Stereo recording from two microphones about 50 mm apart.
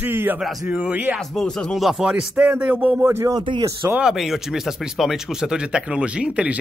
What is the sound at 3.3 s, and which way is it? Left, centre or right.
Speech, right.